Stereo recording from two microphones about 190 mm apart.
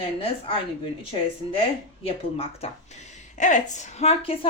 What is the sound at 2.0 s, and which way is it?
Speech, 30° left (ahead or behind).